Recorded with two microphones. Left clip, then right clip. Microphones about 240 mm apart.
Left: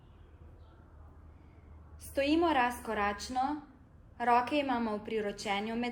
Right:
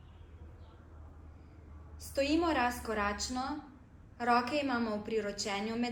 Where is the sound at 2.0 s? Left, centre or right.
Left.